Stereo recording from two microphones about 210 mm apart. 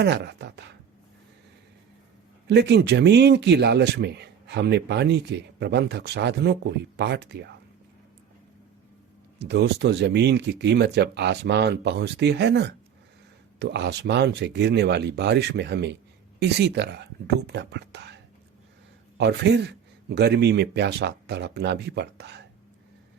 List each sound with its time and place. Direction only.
0.0 s speech: 50° right (ahead or behind)
2.5 s speech: 55° right (ahead or behind)
9.4 s speech: 55° right (ahead or behind)